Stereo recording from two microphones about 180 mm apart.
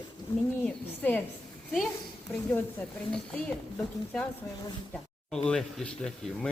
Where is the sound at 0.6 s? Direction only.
10° left (ahead or behind).